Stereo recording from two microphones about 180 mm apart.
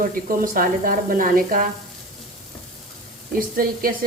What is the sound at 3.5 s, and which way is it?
Speech, 55° right (ahead or behind).